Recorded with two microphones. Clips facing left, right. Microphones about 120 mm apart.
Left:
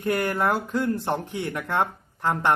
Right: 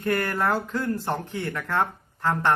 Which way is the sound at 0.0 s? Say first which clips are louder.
Left 1 dB; 20° left (ahead or behind).